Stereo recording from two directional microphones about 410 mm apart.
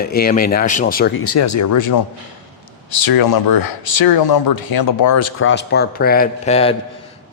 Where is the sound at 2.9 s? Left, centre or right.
Left.